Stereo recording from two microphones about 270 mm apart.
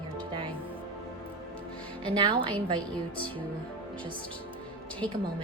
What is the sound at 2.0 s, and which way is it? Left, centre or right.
Speech, centre.